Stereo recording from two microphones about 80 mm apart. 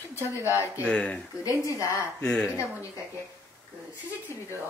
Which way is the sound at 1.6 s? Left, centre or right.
Left.